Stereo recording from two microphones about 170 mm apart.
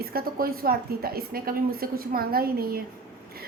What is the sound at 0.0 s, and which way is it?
A woman's voice, 60° right (ahead or behind).